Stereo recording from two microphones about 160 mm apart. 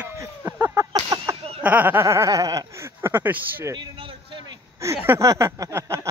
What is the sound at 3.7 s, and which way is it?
Vehicle, 30° right (ahead or behind).